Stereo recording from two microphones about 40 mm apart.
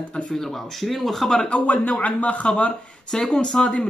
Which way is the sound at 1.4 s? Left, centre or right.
Left.